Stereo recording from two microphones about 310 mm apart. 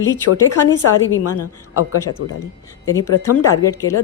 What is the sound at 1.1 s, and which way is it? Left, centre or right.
Speech, left.